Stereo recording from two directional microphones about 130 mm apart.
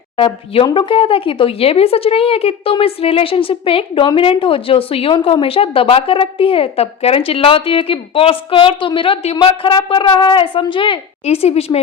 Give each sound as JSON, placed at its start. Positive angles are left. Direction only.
{"t": 0.5, "sound": "a woman's voice", "side_deg": 40}